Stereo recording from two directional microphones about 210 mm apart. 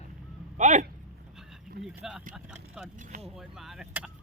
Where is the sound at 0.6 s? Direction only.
35° right (ahead or behind).